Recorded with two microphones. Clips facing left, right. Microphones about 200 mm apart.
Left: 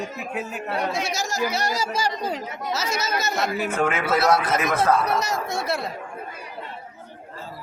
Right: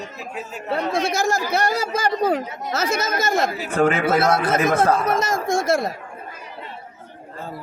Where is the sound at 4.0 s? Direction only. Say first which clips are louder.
Right 2 dB; 55° right (ahead or behind).